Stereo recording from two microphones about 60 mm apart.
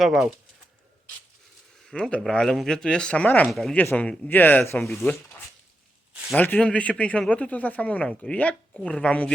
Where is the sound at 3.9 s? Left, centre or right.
Left.